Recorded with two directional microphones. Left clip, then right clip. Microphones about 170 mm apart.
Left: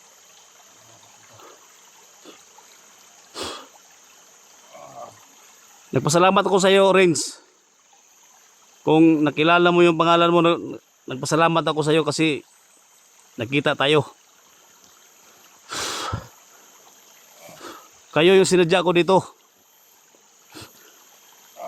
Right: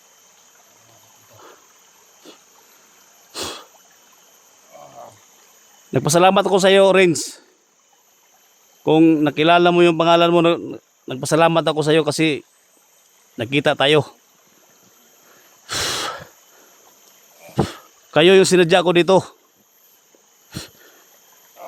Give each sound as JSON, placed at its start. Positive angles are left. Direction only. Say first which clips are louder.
{"t": 2.3, "sound": "a sound", "louder": "right 1 dB", "side_deg": -15}
{"t": 4.7, "sound": "a sound", "louder": "right 1 dB", "side_deg": -15}
{"t": 5.9, "sound": "a man's voice", "louder": "right 3 dB", "side_deg": -15}
{"t": 8.8, "sound": "a man's voice", "louder": "right 2 dB", "side_deg": -15}
{"t": 15.6, "sound": "snort", "louder": "right 5 dB", "side_deg": -20}
{"t": 17.6, "sound": "speech", "louder": "right 17 dB", "side_deg": -20}